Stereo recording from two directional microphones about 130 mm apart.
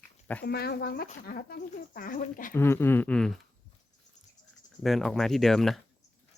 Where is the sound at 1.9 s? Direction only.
90° left.